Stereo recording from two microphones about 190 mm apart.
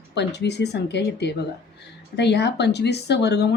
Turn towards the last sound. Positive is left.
turn(degrees=60)  # may be behind; listen again after turning